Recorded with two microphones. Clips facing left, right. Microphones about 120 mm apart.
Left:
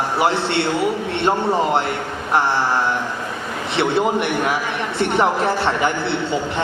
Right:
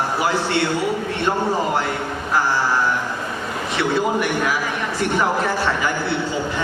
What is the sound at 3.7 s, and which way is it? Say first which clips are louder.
A man's voice: left 2 dB; 25° left (ahead or behind).